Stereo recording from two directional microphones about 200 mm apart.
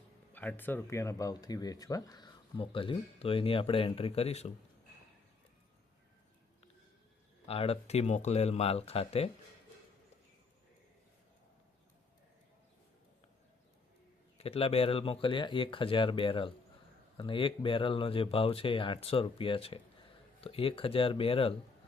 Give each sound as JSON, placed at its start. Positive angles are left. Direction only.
{"t": 0.3, "sound": "speech", "side_deg": 10}
{"t": 7.4, "sound": "speech", "side_deg": 30}
{"t": 14.3, "sound": "speech", "side_deg": 30}